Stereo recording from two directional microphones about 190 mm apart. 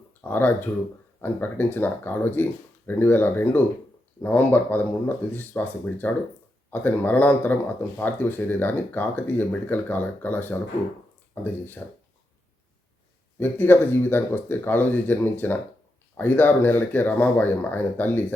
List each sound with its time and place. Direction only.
0.1 s speech: 10° left (ahead or behind)
13.4 s speech: 10° left (ahead or behind)